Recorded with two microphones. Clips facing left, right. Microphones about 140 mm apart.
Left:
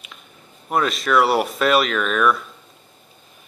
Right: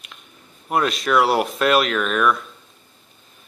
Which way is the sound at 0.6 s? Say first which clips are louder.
Even; centre (ahead or behind).